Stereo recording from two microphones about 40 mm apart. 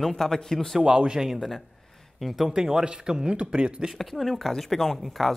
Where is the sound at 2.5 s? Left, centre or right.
Centre.